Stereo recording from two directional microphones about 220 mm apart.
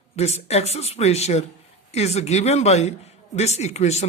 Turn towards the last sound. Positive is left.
turn(degrees=30)  # may be behind; listen again after turning